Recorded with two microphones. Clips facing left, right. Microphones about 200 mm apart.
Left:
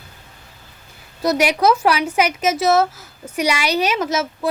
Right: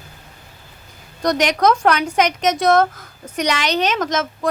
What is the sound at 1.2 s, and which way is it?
A woman's voice, 5° left (ahead or behind).